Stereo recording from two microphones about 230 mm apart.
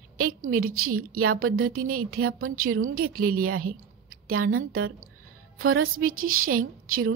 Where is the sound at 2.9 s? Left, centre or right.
Right.